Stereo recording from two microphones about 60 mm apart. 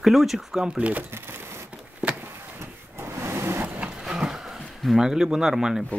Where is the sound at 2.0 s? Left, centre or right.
Centre.